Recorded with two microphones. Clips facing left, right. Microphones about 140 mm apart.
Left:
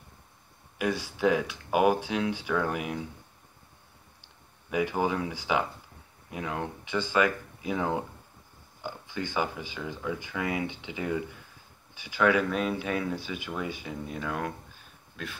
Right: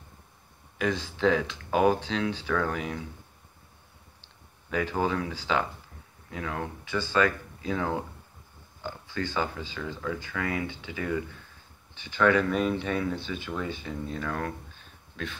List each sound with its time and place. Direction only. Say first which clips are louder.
0.7 s speech: right 1 dB; 10° left (ahead or behind)
4.2 s speech: even; 15° left (ahead or behind)